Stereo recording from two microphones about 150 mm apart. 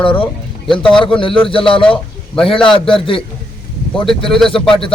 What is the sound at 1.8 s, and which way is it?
Speech, 5° left (ahead or behind).